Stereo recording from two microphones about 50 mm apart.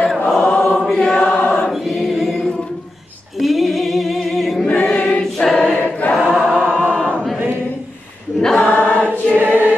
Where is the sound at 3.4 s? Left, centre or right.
Centre.